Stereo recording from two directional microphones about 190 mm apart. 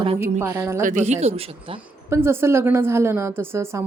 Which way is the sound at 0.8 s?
40° right (ahead or behind).